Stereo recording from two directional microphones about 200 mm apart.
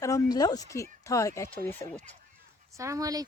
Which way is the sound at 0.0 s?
15° left (ahead or behind).